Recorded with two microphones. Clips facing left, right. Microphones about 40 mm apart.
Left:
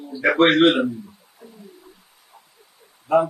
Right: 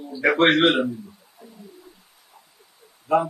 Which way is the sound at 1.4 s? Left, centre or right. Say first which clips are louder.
Left 2 dB; left.